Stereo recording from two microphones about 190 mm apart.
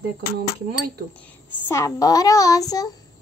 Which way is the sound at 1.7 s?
15° left (ahead or behind).